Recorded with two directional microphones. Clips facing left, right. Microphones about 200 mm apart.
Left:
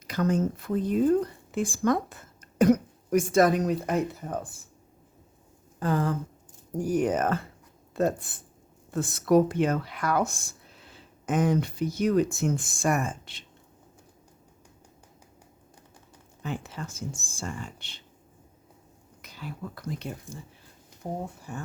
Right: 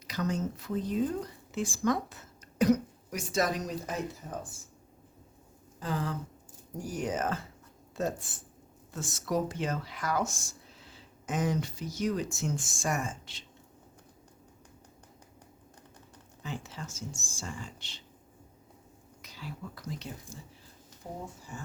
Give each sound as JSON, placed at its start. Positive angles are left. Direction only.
{"t": 0.1, "sound": "speech", "side_deg": 55}
{"t": 5.8, "sound": "speech", "side_deg": 55}
{"t": 16.4, "sound": "speech", "side_deg": 60}
{"t": 19.2, "sound": "speech", "side_deg": 55}